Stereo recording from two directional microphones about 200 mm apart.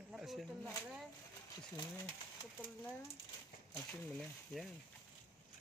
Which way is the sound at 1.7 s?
15° left (ahead or behind).